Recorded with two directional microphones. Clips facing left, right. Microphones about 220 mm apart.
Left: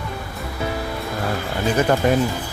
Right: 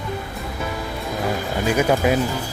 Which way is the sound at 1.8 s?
5° right (ahead or behind).